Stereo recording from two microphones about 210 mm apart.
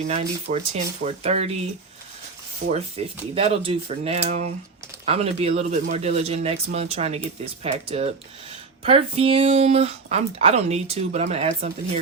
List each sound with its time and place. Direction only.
0.1 s speech: 30° right (ahead or behind)
2.7 s speech: 25° right (ahead or behind)